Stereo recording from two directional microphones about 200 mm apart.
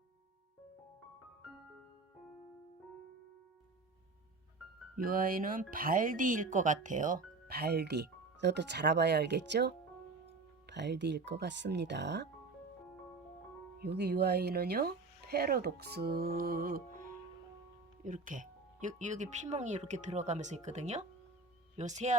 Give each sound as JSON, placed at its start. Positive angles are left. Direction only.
{"t": 4.9, "sound": "speech", "side_deg": -45}
{"t": 13.7, "sound": "speech", "side_deg": -55}
{"t": 18.0, "sound": "speech", "side_deg": -40}